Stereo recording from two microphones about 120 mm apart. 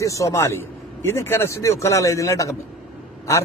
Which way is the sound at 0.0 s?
25° left (ahead or behind).